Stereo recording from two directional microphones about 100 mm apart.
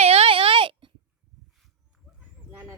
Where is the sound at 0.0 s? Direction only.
85° right; by 0.9 s 60° right (ahead or behind).